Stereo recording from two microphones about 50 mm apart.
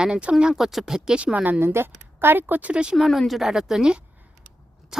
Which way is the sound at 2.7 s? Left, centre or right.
Right.